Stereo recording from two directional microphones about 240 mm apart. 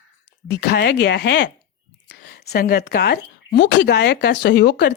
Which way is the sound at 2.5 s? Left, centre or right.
Left.